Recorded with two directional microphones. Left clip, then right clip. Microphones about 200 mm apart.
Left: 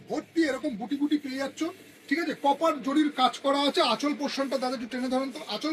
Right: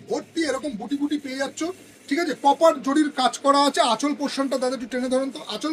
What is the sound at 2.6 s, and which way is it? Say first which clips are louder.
Speech: right 7 dB; 35° right (ahead or behind).